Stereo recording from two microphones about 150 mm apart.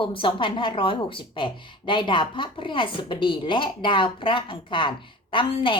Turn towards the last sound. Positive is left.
turn(degrees=35)  # may be behind; listen again after turning